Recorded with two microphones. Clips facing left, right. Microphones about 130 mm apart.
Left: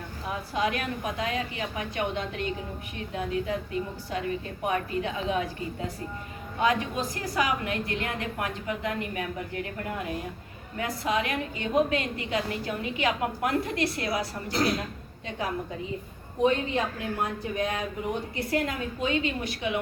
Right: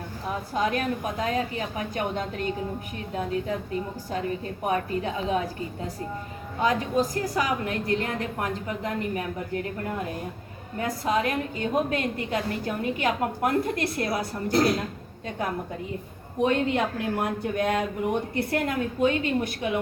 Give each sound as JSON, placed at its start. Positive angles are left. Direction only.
{"t": 0.5, "sound": "a woman's voice", "side_deg": -40}
{"t": 4.6, "sound": "a woman's voice", "side_deg": -40}
{"t": 6.6, "sound": "a woman's voice", "side_deg": -40}
{"t": 10.8, "sound": "a woman's voice", "side_deg": -45}
{"t": 16.4, "sound": "speech", "side_deg": -60}